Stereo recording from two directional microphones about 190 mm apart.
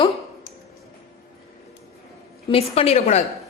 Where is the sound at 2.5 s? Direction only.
30° left (ahead or behind).